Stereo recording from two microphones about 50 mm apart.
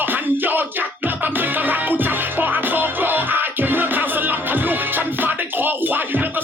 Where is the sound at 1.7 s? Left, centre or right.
Right.